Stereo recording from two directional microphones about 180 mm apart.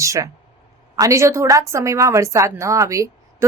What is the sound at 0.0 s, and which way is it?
A woman's voice, 15° right (ahead or behind).